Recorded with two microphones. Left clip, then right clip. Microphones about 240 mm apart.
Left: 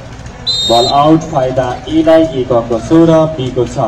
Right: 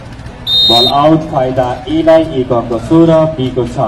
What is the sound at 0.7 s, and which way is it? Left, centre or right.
Speech, left.